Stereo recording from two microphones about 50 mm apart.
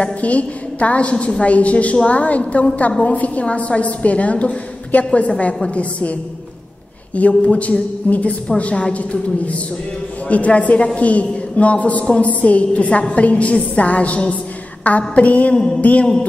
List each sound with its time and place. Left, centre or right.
0.0 s a woman's voice: left
7.2 s a woman's voice: left